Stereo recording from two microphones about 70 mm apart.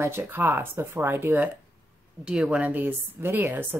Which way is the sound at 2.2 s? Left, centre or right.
Centre.